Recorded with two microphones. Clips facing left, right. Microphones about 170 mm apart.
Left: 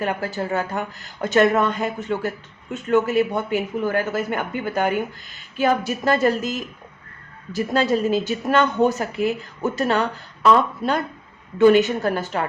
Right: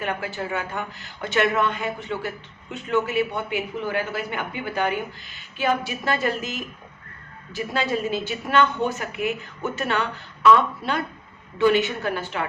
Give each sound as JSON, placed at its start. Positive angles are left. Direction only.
{"t": 0.0, "sound": "a woman's voice", "side_deg": 40}